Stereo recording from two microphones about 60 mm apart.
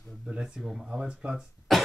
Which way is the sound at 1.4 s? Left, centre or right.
Centre.